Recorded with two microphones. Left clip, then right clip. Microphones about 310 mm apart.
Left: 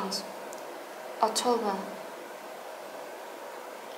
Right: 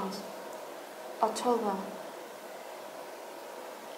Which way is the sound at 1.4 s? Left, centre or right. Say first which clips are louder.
Left 2 dB; centre.